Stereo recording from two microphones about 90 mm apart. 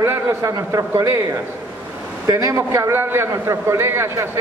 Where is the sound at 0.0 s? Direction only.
30° right (ahead or behind).